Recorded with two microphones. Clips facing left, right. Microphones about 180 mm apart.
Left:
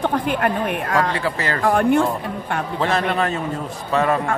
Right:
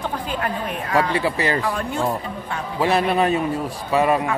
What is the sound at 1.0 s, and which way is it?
Speech, 15° right (ahead or behind).